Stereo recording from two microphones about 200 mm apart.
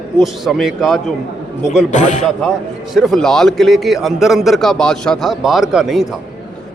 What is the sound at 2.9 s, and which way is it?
A man's voice, centre (ahead or behind).